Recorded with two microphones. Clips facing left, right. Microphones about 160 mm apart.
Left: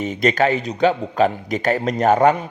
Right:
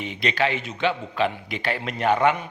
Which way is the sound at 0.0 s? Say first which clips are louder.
Left 7 dB; 45° left (ahead or behind).